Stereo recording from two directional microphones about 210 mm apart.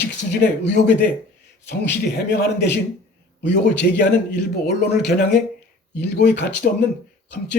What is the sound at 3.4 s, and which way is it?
Speech, 55° left (ahead or behind).